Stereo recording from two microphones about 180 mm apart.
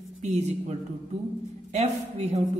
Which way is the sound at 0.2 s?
40° right (ahead or behind).